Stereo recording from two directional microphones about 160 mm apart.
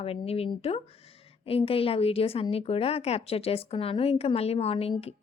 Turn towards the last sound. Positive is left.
turn(degrees=35)  # may be behind; listen again after turning